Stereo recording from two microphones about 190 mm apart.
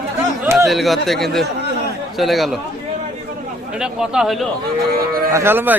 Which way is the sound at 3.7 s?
5° right (ahead or behind).